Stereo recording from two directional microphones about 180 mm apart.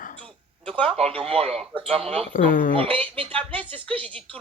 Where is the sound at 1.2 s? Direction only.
35° right (ahead or behind).